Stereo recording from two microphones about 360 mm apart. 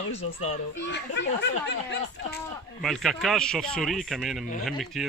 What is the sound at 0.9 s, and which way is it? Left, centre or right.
Speech, left.